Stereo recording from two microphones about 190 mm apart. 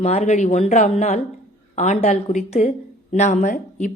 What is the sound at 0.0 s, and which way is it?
A woman's voice, 35° left (ahead or behind).